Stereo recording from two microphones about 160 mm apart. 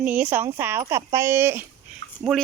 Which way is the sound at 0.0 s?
10° right (ahead or behind).